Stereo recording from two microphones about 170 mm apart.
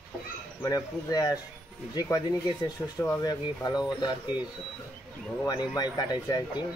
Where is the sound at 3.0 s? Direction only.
20° left (ahead or behind).